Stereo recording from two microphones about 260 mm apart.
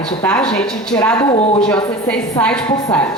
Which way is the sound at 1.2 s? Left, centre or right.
Left.